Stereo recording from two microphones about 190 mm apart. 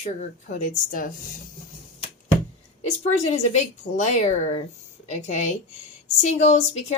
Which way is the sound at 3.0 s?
35° left (ahead or behind).